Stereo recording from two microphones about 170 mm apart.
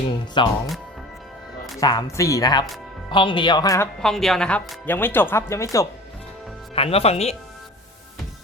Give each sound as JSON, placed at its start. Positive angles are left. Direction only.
{"t": 0.4, "sound": "speech", "side_deg": 30}
{"t": 1.8, "sound": "speech", "side_deg": 20}
{"t": 4.0, "sound": "speech", "side_deg": 0}
{"t": 6.7, "sound": "speech", "side_deg": 35}